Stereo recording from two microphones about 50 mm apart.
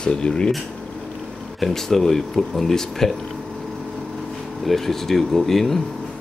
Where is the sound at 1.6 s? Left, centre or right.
Centre.